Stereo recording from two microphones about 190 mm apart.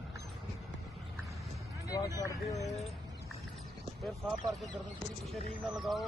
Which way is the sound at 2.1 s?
15° left (ahead or behind).